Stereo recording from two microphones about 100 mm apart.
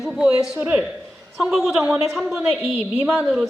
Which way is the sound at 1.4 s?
5° right (ahead or behind).